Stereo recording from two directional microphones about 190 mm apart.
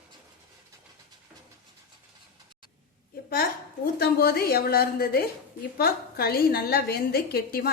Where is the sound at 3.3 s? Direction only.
50° left (ahead or behind).